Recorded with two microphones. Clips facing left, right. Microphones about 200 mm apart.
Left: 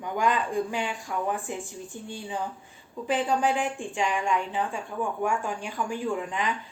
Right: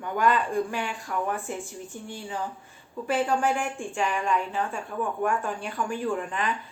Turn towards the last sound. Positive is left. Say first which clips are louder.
# right 1 dB
turn(degrees=15)  # may be behind; listen again after turning